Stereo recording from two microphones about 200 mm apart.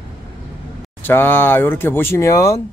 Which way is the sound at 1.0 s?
10° left (ahead or behind).